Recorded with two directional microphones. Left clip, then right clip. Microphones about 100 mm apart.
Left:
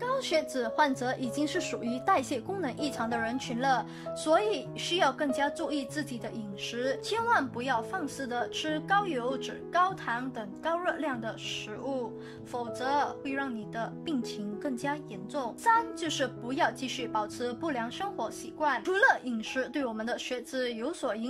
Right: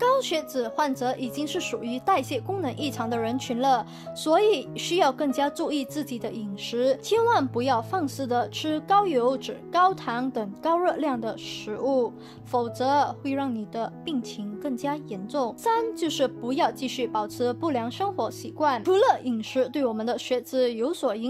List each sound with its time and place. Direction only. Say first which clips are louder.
0.0 s a woman's voice: right 6 dB; 25° right (ahead or behind); by 13.8 s 45° right (ahead or behind)
14.6 s a woman's voice: right 5 dB; 30° right (ahead or behind)